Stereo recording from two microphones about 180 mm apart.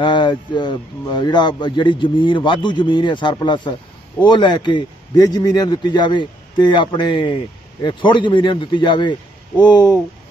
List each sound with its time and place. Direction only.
0.0 s a man's voice: 25° left (ahead or behind)